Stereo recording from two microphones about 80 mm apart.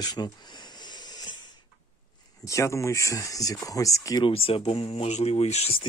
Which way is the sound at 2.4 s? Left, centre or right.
Left.